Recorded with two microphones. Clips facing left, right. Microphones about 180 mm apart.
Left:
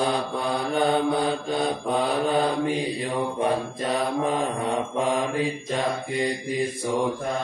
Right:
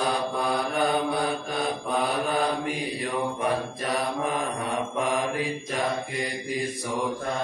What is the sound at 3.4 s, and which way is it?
Mantra, 25° left (ahead or behind).